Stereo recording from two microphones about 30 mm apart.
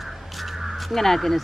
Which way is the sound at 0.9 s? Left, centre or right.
Centre.